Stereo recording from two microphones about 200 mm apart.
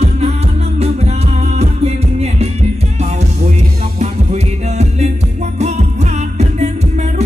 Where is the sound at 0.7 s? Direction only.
30° right (ahead or behind).